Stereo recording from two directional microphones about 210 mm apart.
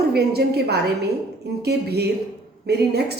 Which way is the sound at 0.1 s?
50° right (ahead or behind).